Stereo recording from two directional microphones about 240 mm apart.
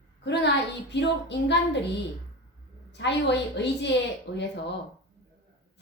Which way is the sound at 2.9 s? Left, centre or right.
Left.